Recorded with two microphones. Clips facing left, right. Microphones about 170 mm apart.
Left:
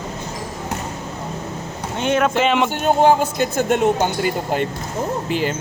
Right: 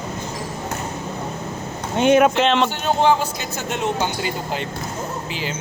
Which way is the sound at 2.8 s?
45° left (ahead or behind).